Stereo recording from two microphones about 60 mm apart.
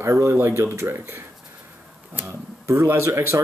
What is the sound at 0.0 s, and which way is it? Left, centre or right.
Speech, right.